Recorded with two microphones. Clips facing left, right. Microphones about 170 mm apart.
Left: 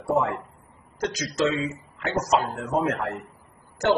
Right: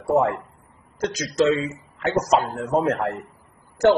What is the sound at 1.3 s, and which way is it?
Speech, 40° right (ahead or behind).